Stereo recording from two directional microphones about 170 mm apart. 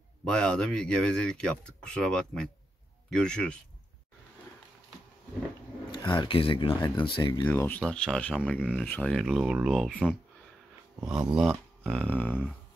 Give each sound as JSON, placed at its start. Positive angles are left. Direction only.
{"t": 0.2, "sound": "speech", "side_deg": 5}
{"t": 5.9, "sound": "speech", "side_deg": 25}
{"t": 7.4, "sound": "speech", "side_deg": 10}
{"t": 8.7, "sound": "speech", "side_deg": 10}